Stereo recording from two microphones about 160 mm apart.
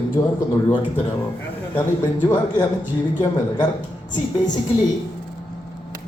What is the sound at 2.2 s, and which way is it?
Speech, 25° left (ahead or behind).